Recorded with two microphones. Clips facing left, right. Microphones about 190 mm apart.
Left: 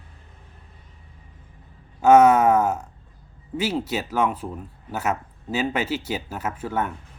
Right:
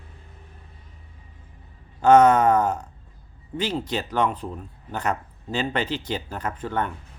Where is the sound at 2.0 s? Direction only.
10° left (ahead or behind).